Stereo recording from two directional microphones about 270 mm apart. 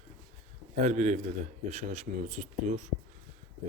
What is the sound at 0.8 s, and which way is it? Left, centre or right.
Speech, right.